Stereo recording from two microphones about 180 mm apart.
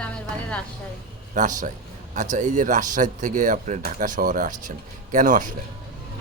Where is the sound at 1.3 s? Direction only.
45° right (ahead or behind).